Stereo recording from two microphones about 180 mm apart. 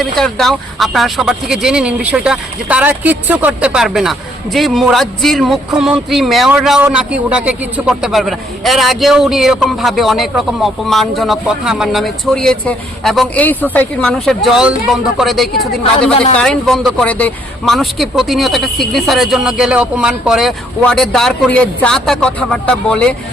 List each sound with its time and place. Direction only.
0.0 s a man's voice: centre (ahead or behind)